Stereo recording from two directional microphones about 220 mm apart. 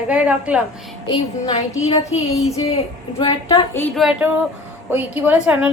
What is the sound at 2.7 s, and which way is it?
Speech, 25° left (ahead or behind).